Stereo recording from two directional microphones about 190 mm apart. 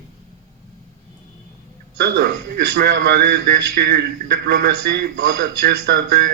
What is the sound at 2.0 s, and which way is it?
A man's voice, 60° right (ahead or behind).